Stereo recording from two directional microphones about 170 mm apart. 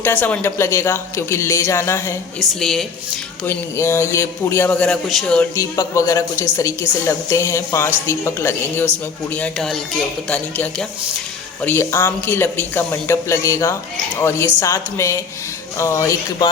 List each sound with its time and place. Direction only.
0.0 s speech: 10° left (ahead or behind)
2.4 s speech: centre (ahead or behind)
3.4 s speech: 15° left (ahead or behind)
5.5 s a woman's voice: 20° left (ahead or behind)